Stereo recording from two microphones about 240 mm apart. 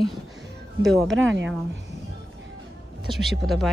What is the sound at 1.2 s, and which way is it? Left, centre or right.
Speech, right.